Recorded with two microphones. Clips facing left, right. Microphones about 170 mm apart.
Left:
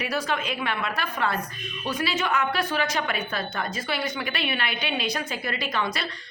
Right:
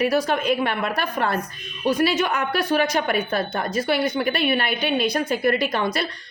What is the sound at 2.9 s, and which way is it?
A woman's voice, 55° right (ahead or behind).